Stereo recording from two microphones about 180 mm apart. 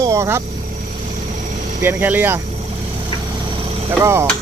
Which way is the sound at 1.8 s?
10° right (ahead or behind).